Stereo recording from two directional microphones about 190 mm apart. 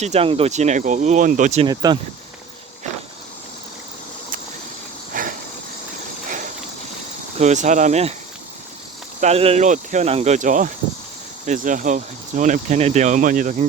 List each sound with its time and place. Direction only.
0.0 s speech: 35° right (ahead or behind)
1.6 s speech: 20° right (ahead or behind)
5.1 s a sound: 45° right (ahead or behind)
7.3 s speech: 40° right (ahead or behind)
9.2 s speech: 30° right (ahead or behind)